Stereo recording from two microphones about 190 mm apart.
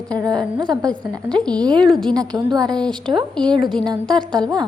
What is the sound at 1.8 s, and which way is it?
Speech, centre (ahead or behind).